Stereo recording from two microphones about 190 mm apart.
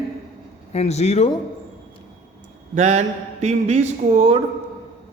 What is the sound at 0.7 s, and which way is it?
Speech, 35° left (ahead or behind).